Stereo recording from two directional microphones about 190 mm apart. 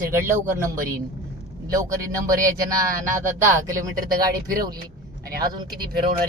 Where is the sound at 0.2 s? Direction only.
15° right (ahead or behind).